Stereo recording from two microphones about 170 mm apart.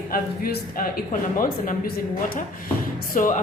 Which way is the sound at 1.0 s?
55° left (ahead or behind).